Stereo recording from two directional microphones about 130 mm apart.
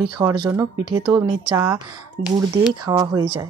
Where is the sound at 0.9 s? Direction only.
40° right (ahead or behind).